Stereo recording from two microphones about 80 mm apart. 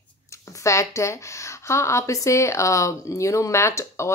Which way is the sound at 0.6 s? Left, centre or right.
Left.